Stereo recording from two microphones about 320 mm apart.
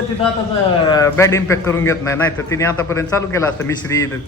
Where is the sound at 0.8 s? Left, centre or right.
Centre.